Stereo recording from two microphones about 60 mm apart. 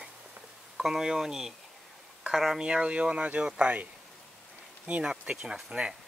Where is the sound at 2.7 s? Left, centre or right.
Centre.